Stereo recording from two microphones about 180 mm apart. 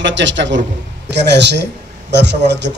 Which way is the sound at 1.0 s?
75° right (ahead or behind).